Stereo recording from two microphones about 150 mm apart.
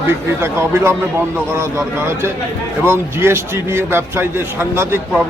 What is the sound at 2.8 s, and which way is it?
A man's voice, 15° right (ahead or behind).